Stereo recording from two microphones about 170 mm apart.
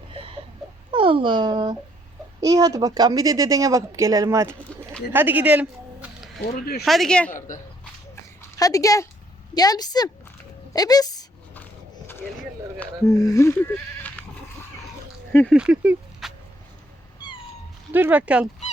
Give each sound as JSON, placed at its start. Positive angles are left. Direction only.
{"t": 0.1, "sound": "a sound", "side_deg": -35}
{"t": 0.9, "sound": "a child's voice", "side_deg": -30}
{"t": 6.4, "sound": "speech", "side_deg": 65}
{"t": 6.8, "sound": "speech", "side_deg": 0}
{"t": 7.3, "sound": "speech", "side_deg": 50}
{"t": 8.4, "sound": "a woman's voice", "side_deg": 20}
{"t": 11.5, "sound": "a sound", "side_deg": 10}
{"t": 13.1, "sound": "speech", "side_deg": 20}
{"t": 15.3, "sound": "speech", "side_deg": 10}
{"t": 15.5, "sound": "a sound", "side_deg": -5}
{"t": 17.9, "sound": "speech", "side_deg": -10}